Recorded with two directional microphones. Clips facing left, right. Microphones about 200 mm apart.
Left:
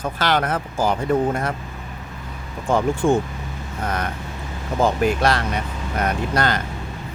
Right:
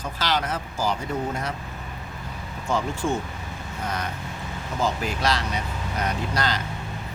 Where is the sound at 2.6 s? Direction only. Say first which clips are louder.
Left 7 dB; 55° left (ahead or behind).